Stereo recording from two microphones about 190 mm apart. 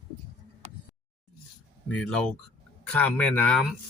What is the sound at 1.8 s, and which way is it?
Speech, 5° left (ahead or behind).